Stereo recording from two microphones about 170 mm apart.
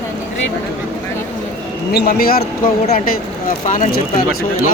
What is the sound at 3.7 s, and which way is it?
Speech, 50° left (ahead or behind).